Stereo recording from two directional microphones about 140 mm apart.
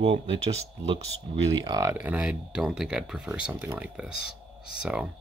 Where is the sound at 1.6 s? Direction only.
25° right (ahead or behind).